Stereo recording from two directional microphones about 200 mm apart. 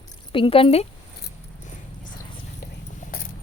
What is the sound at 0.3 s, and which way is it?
Speech, 25° left (ahead or behind).